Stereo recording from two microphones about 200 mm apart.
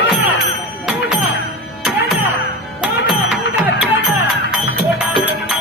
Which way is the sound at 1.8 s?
Centre (ahead or behind).